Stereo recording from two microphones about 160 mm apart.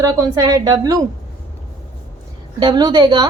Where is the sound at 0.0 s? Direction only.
20° right (ahead or behind).